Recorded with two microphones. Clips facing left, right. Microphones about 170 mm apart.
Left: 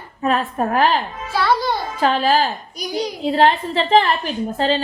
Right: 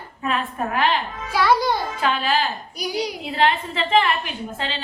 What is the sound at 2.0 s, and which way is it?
Speech, 40° left (ahead or behind).